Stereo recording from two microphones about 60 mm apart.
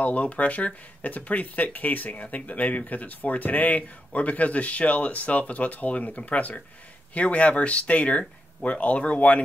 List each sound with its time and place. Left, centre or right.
0.0 s speech: left